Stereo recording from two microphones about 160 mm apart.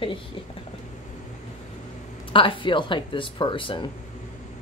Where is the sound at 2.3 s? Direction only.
30° left (ahead or behind).